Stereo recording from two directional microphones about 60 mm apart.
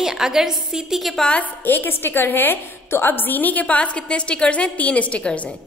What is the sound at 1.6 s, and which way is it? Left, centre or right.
A woman's voice, left.